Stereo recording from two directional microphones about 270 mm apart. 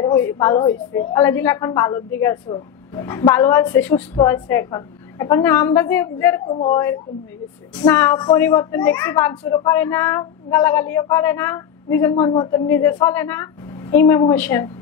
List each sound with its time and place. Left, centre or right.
0.0 s a woman's voice: centre
6.4 s a man's voice: left